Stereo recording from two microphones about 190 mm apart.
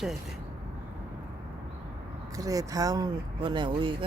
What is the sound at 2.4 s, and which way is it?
Speech, 20° right (ahead or behind).